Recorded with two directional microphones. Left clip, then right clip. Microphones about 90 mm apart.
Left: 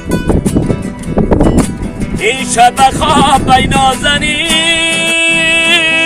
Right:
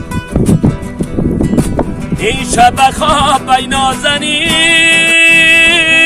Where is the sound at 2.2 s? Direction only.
35° right (ahead or behind).